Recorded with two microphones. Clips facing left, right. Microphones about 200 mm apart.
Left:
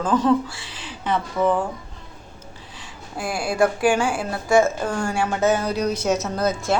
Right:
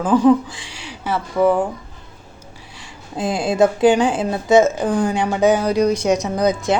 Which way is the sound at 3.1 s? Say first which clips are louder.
Right 5 dB; 20° right (ahead or behind).